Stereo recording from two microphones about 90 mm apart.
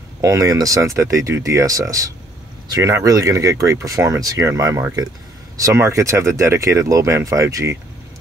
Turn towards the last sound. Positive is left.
turn(degrees=-35)  # may be behind; listen again after turning